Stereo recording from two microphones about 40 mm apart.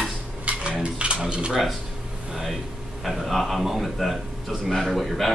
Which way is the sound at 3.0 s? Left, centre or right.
Centre.